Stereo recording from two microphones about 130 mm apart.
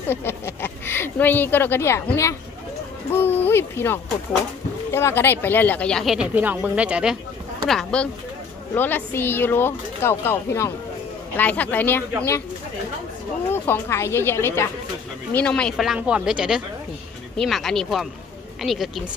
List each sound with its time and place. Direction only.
0.1 s a woman's voice: 15° left (ahead or behind)
6.1 s speech: 10° right (ahead or behind)
7.6 s speech: 5° left (ahead or behind)
8.7 s a woman's voice: 15° left (ahead or behind)
13.5 s a woman's voice: 20° left (ahead or behind)
15.3 s a woman's voice: 5° left (ahead or behind)
15.7 s speech: 5° right (ahead or behind)